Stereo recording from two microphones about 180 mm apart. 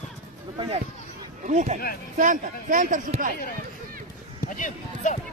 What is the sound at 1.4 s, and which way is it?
Speech, 40° right (ahead or behind).